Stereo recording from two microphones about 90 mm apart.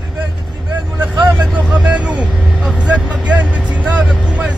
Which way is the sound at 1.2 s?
15° right (ahead or behind).